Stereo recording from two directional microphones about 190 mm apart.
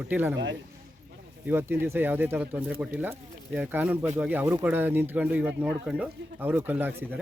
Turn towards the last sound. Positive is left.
turn(degrees=-10)  # may be behind; listen again after turning